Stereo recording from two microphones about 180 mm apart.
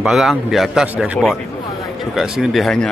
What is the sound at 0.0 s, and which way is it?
Speech, centre (ahead or behind).